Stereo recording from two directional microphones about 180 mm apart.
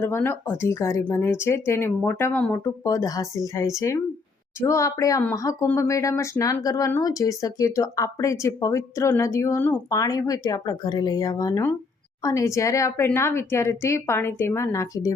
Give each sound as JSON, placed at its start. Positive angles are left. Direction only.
{"t": 0.0, "sound": "speech", "side_deg": 15}